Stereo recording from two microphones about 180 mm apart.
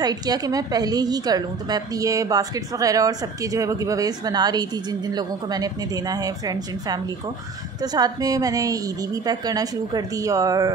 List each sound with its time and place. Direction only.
0.0 s a woman's voice: 20° right (ahead or behind)